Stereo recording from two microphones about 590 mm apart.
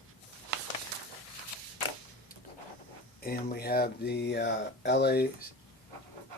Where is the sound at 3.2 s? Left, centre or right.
Centre.